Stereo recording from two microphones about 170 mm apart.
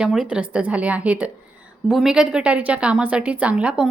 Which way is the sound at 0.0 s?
5° right (ahead or behind).